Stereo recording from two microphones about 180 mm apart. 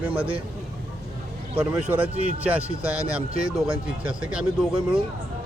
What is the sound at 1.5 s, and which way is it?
A man's voice, 10° right (ahead or behind).